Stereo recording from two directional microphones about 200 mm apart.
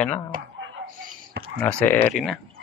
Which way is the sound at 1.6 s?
10° left (ahead or behind).